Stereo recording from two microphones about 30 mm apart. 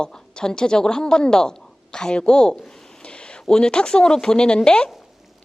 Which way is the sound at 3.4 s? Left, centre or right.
Left.